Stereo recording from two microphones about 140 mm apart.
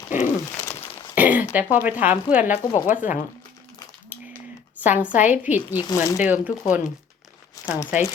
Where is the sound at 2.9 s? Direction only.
65° left (ahead or behind).